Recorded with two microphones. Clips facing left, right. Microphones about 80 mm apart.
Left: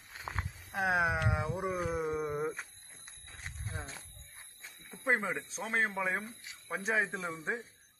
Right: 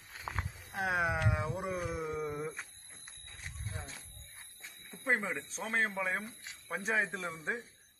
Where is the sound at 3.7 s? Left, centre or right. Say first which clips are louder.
Left 3 dB; left.